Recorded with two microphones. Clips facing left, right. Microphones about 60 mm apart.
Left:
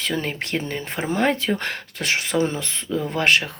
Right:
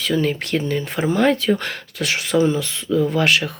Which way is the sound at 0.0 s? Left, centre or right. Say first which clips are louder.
Right 5 dB; left.